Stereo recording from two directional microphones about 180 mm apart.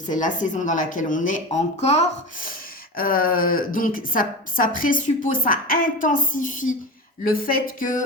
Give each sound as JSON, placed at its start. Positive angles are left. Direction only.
{"t": 0.1, "sound": "a woman's voice", "side_deg": 45}
{"t": 2.9, "sound": "a woman's voice", "side_deg": 55}